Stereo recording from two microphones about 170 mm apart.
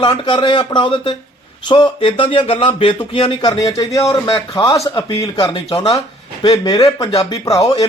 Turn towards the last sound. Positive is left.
turn(degrees=20)  # may be behind; listen again after turning